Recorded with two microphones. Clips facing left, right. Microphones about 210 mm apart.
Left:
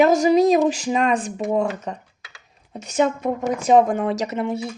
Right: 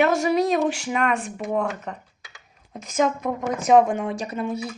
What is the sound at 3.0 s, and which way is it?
Speech, 30° left (ahead or behind).